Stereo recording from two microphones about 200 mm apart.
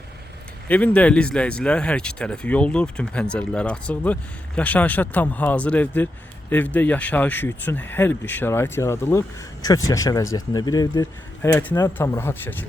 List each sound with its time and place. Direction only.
0.7 s speech: 5° left (ahead or behind)